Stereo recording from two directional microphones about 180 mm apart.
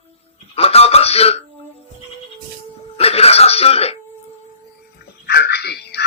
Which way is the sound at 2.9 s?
35° left (ahead or behind).